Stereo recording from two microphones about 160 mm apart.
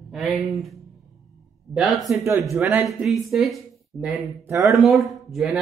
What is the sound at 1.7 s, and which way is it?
Speech, centre (ahead or behind).